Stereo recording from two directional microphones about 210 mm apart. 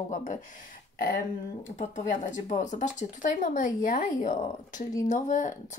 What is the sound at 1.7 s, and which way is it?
Speech, 35° left (ahead or behind).